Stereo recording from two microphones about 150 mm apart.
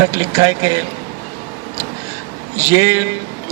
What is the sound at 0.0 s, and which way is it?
Speech, 25° right (ahead or behind).